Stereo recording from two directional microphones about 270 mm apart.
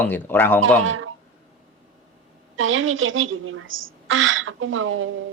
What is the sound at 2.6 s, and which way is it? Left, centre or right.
A woman's voice, right.